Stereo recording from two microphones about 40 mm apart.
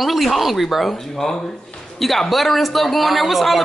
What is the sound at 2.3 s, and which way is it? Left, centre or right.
A man's voice, centre.